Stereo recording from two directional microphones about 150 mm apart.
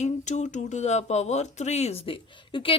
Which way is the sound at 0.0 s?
50° left (ahead or behind).